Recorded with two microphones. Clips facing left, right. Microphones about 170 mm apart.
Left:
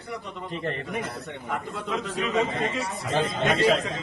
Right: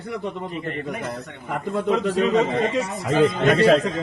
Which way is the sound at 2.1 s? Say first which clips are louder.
Right 9 dB; 35° right (ahead or behind).